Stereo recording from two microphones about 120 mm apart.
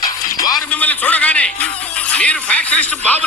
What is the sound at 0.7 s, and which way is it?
Music, 15° left (ahead or behind).